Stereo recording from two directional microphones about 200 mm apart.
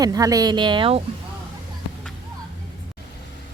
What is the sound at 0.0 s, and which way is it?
Speech, 20° right (ahead or behind).